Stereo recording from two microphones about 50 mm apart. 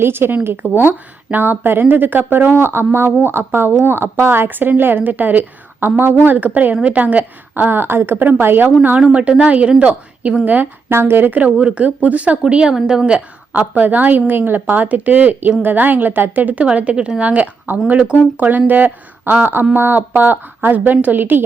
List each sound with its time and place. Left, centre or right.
0.0 s speech: right
6.2 s a woman's voice: right
9.4 s a woman's voice: right
10.4 s a woman's voice: right
10.8 s a woman's voice: right
11.3 s a woman's voice: right
12.4 s a woman's voice: centre
13.5 s a woman's voice: right
16.6 s a woman's voice: right